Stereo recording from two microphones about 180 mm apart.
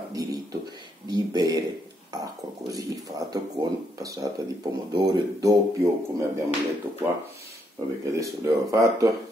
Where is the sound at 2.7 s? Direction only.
20° right (ahead or behind).